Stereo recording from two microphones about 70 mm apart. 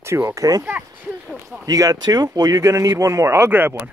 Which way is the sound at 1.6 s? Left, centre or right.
Right.